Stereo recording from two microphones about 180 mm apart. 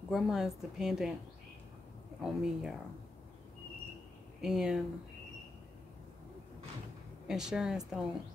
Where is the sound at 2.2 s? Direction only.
5° right (ahead or behind).